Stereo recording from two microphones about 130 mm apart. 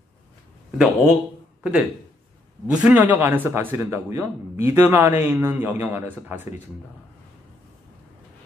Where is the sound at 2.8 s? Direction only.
10° right (ahead or behind).